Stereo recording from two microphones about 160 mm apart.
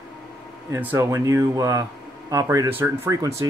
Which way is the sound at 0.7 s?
15° right (ahead or behind).